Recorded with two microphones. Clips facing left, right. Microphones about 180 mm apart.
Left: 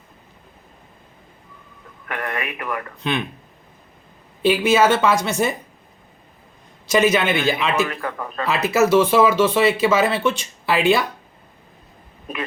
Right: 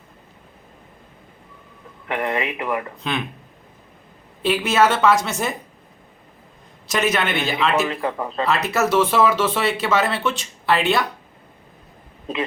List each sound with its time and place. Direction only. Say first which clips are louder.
2.0 s speech: right 4 dB; 20° right (ahead or behind)
3.0 s speech: left 2 dB; centre (ahead or behind)
4.4 s speech: left 2 dB; centre (ahead or behind)
6.8 s speech: left 4 dB; centre (ahead or behind)
7.9 s speech: right 3 dB; 25° right (ahead or behind)
8.4 s speech: left 4 dB; centre (ahead or behind)